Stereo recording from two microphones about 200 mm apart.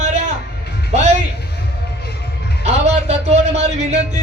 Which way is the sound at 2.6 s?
35° right (ahead or behind).